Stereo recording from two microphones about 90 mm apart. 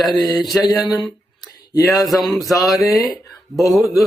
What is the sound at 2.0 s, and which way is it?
Speech, centre (ahead or behind).